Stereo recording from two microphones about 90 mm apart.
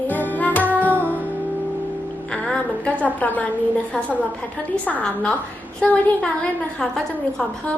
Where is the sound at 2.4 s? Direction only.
15° left (ahead or behind).